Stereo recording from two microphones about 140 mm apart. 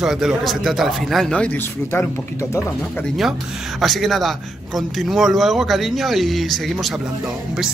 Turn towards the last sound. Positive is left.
turn(degrees=0)  # may be behind; listen again after turning